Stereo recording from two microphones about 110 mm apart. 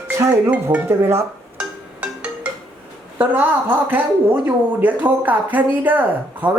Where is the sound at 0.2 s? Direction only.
25° right (ahead or behind).